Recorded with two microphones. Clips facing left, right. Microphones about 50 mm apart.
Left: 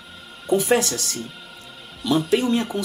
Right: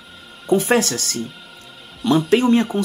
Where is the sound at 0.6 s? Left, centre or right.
Right.